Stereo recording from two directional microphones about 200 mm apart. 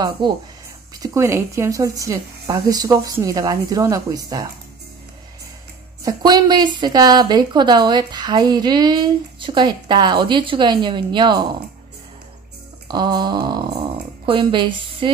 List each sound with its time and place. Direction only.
0.2 s a woman's voice: 25° right (ahead or behind)
6.0 s a woman's voice: 20° right (ahead or behind)
12.8 s a woman's voice: 20° right (ahead or behind)